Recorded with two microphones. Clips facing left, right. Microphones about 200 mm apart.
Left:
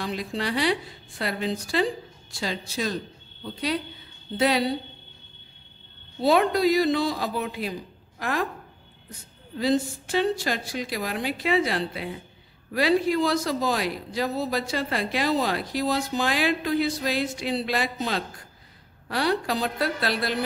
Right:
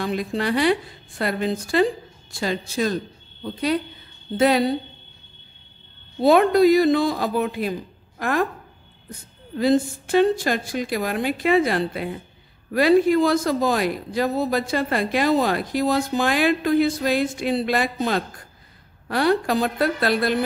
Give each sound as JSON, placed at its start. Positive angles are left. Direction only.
{"t": 0.0, "sound": "a man's voice", "side_deg": -50}
{"t": 6.2, "sound": "a man's voice", "side_deg": -50}
{"t": 9.6, "sound": "a man's voice", "side_deg": -50}